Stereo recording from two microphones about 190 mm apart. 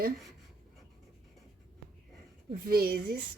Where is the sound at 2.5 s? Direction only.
55° right (ahead or behind).